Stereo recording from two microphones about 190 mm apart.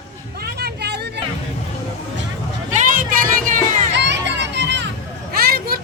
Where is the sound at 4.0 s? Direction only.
65° right (ahead or behind).